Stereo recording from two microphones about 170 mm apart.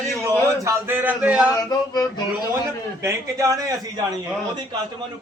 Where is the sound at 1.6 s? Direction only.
20° left (ahead or behind).